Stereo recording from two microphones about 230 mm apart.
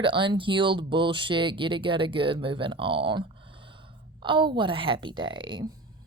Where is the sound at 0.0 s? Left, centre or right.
Right.